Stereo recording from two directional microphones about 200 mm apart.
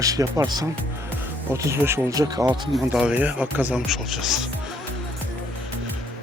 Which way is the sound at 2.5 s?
5° right (ahead or behind).